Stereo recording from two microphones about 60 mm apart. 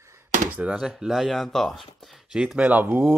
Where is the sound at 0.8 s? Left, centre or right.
Centre.